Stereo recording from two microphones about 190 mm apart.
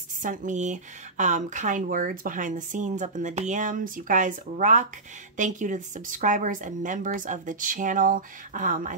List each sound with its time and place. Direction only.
0.2 s speech: 45° right (ahead or behind)